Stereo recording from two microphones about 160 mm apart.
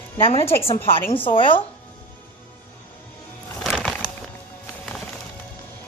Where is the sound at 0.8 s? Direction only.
15° left (ahead or behind).